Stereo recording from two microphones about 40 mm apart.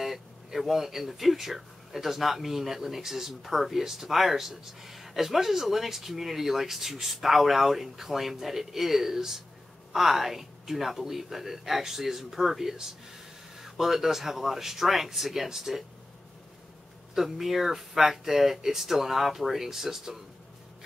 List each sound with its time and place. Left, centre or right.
0.0 s speech: centre
17.1 s speech: centre